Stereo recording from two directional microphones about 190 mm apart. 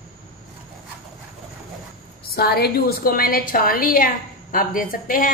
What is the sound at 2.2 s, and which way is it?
A woman's voice, 55° left (ahead or behind).